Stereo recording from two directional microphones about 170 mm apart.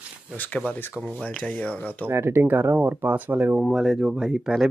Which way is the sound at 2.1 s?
15° right (ahead or behind).